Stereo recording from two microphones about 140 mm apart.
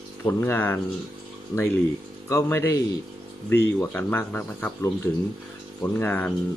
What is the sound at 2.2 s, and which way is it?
Speech, 20° left (ahead or behind).